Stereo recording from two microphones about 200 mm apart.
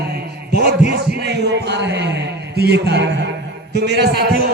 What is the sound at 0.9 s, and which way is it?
A man's voice, 55° right (ahead or behind).